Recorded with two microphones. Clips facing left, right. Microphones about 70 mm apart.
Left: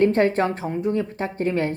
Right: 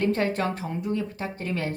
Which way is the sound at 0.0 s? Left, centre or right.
Left.